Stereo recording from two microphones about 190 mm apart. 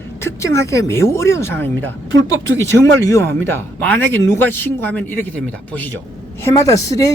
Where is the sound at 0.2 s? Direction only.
15° left (ahead or behind).